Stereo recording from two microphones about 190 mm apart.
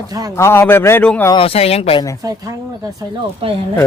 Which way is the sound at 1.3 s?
30° left (ahead or behind).